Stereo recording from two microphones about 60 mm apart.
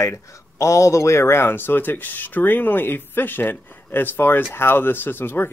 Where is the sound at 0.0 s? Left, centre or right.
Left.